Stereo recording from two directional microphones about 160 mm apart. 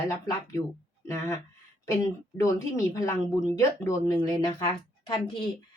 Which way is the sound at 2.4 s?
20° left (ahead or behind).